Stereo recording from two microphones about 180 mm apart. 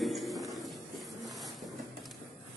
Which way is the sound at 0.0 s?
Centre (ahead or behind).